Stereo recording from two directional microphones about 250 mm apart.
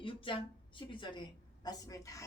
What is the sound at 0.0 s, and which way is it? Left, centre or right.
A woman's voice, centre.